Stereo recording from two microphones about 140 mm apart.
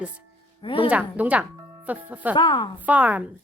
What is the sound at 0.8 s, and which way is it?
A woman's voice, 10° right (ahead or behind).